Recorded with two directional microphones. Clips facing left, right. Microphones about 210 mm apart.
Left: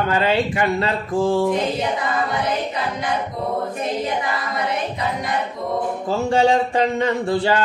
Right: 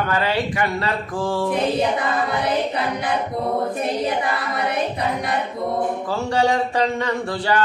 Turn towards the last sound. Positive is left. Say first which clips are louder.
# left 3 dB
turn(degrees=25)  # may be behind; listen again after turning